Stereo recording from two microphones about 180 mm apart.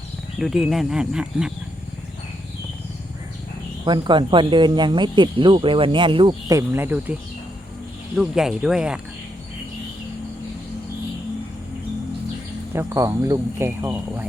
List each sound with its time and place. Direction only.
0.3 s speech: centre (ahead or behind)
3.8 s speech: 25° right (ahead or behind); by 9.0 s 5° right (ahead or behind)
12.7 s speech: 15° right (ahead or behind)